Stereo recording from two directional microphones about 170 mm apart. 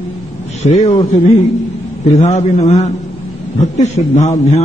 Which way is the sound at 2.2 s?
45° left (ahead or behind).